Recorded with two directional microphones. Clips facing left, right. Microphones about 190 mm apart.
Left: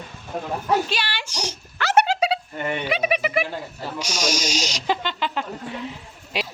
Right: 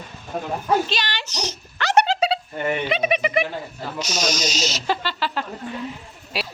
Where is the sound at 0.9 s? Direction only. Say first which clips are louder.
Right 1 dB; 10° left (ahead or behind).